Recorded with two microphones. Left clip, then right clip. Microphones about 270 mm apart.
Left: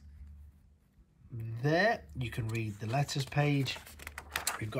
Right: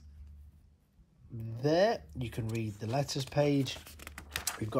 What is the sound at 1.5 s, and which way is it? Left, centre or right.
Speech, centre.